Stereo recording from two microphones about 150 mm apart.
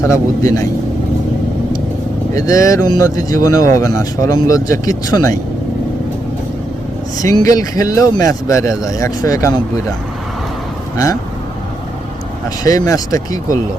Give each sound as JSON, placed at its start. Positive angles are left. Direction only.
{"t": 0.1, "sound": "speech", "side_deg": 20}
{"t": 2.3, "sound": "speech", "side_deg": 20}
{"t": 7.2, "sound": "speech", "side_deg": 25}
{"t": 10.9, "sound": "speech", "side_deg": 25}
{"t": 12.6, "sound": "speech", "side_deg": 25}